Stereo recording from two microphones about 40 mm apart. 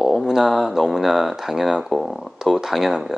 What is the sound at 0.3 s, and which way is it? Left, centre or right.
Speech, centre.